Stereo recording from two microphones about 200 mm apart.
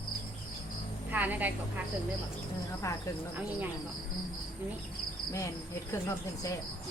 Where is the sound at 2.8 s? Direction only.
15° left (ahead or behind).